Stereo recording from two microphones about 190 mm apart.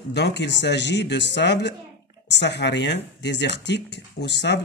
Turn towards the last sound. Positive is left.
turn(degrees=65)  # may be behind; listen again after turning